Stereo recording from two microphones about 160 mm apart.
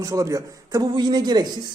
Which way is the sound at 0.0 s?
20° right (ahead or behind).